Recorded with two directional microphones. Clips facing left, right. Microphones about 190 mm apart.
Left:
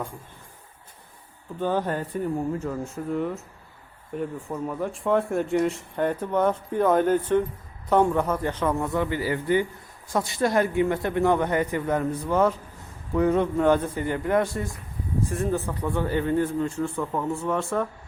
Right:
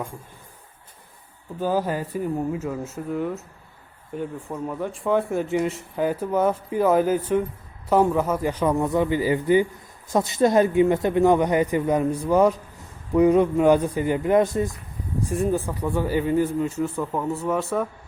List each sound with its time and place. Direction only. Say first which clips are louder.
1.5 s speech: right 2 dB; 5° right (ahead or behind)